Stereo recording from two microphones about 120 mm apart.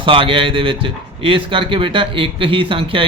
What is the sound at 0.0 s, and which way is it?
Speech, 45° right (ahead or behind).